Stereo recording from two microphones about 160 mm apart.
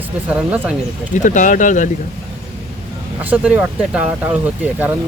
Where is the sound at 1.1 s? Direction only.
50° left (ahead or behind).